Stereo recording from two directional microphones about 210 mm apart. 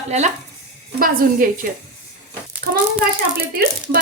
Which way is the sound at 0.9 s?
45° right (ahead or behind).